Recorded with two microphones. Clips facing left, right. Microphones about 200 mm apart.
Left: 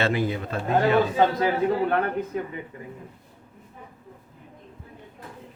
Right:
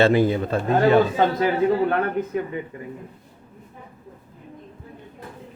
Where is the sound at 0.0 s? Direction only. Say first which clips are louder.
Right 7 dB; 30° right (ahead or behind).